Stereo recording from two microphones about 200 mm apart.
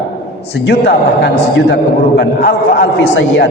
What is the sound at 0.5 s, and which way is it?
A man's voice, 55° left (ahead or behind).